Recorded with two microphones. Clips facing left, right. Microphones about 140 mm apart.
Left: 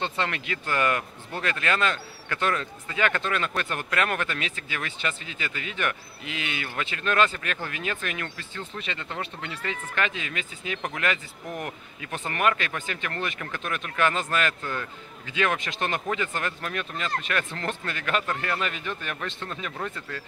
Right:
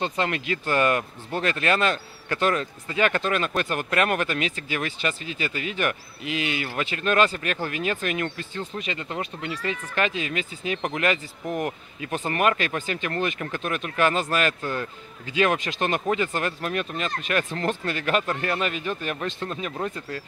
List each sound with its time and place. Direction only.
0.0 s speech: 15° right (ahead or behind)
7.0 s speech: 20° right (ahead or behind)